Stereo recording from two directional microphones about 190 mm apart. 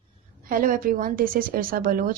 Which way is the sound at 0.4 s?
45° right (ahead or behind).